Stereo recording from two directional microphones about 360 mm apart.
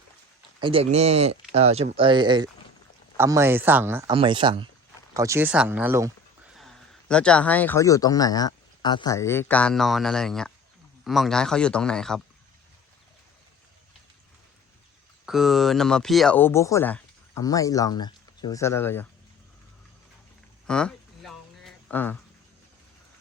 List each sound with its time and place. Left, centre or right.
0.6 s speech: centre
15.3 s speech: centre
20.7 s a sound: centre